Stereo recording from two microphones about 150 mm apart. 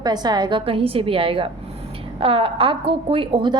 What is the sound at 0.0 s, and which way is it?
A woman's voice, 25° right (ahead or behind).